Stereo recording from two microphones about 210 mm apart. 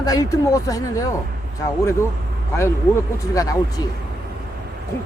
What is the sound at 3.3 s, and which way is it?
Speech, 15° left (ahead or behind).